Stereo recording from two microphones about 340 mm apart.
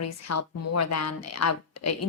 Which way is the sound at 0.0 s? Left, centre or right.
Left.